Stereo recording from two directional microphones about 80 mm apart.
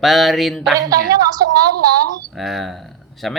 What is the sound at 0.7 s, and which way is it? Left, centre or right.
A woman's voice, right.